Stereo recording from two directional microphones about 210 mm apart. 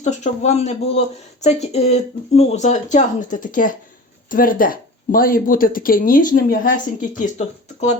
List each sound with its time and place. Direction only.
0.0 s speech: 35° left (ahead or behind)